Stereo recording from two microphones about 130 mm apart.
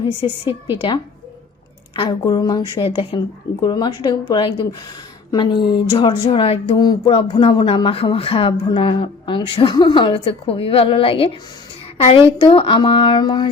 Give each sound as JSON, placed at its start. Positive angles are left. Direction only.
{"t": 0.0, "sound": "speech", "side_deg": 40}
{"t": 2.0, "sound": "speech", "side_deg": 35}
{"t": 2.8, "sound": "speech", "side_deg": 40}
{"t": 6.7, "sound": "a woman's voice", "side_deg": 35}